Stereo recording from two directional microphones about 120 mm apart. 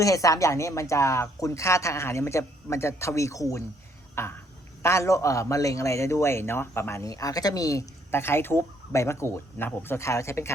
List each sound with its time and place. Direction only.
0.0 s a man's voice: 30° left (ahead or behind)
4.1 s a sound: 20° left (ahead or behind)
4.8 s a man's voice: 25° left (ahead or behind)